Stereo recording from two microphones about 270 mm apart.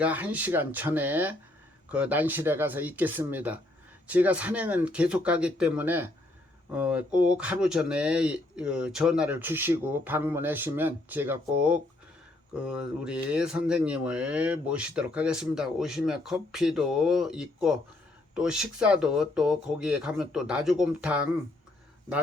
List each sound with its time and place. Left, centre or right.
0.0 s speech: centre